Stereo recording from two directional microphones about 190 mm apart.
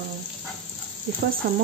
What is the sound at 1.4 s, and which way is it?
Speech, 55° right (ahead or behind).